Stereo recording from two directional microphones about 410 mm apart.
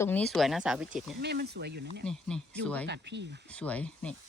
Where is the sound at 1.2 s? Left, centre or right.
Right.